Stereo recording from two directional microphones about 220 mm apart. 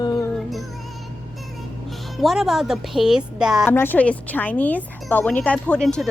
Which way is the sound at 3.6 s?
10° left (ahead or behind).